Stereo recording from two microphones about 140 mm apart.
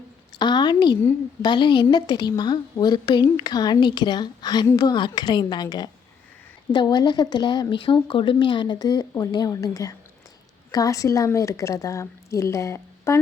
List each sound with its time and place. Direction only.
0.3 s a woman's voice: 30° left (ahead or behind)